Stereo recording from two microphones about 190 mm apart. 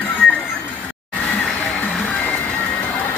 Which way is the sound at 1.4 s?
5° left (ahead or behind).